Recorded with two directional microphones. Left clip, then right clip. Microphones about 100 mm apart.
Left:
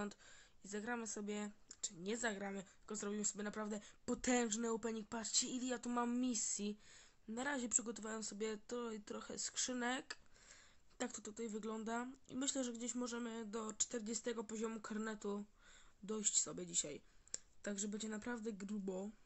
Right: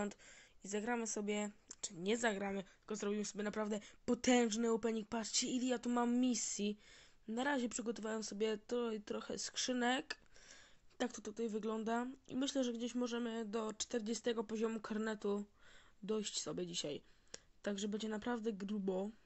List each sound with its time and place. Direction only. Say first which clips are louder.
0.1 s speech: right 3 dB; 25° right (ahead or behind); by 2.2 s 40° right (ahead or behind)
2.2 s speech: right 5 dB; 30° right (ahead or behind)
5.9 s speech: right 3 dB; 15° right (ahead or behind)
6.2 s speech: right 4 dB; 35° right (ahead or behind)
11.0 s speech: right 5 dB; 20° right (ahead or behind)